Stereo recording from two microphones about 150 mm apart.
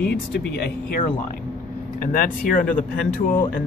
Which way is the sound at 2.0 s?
70° left (ahead or behind).